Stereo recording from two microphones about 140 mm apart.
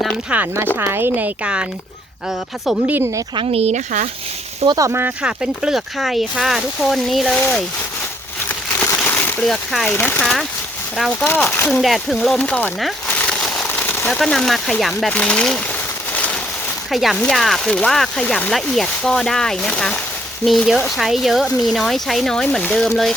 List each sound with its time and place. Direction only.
0.3 s speech: 15° right (ahead or behind)
2.6 s speech: 10° right (ahead or behind)
3.3 s speech: 45° right (ahead or behind)
4.6 s speech: 30° right (ahead or behind)
4.9 s speech: 15° right (ahead or behind)
5.2 s speech: 5° right (ahead or behind); by 7.6 s 10° left (ahead or behind)
8.8 s a sound: 15° left (ahead or behind)
9.4 s speech: centre (ahead or behind)
11.7 s a sound: centre (ahead or behind)
14.1 s speech: centre (ahead or behind)
16.1 s a sound: 10° left (ahead or behind)
16.9 s speech: centre (ahead or behind)